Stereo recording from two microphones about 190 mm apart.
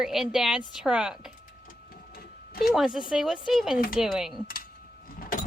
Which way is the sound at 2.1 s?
50° left (ahead or behind).